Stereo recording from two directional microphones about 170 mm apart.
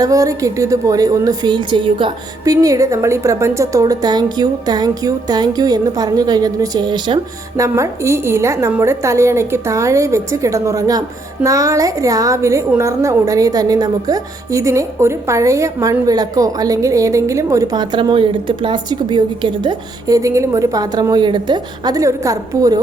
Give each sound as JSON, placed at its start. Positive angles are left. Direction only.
{"t": 0.0, "sound": "a woman's voice", "side_deg": -20}